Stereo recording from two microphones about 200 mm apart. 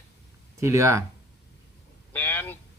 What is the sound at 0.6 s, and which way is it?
Speech, 15° right (ahead or behind).